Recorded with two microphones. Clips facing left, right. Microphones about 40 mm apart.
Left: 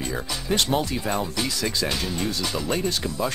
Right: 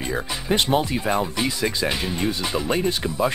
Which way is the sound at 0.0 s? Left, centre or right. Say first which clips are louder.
Right 3 dB; centre.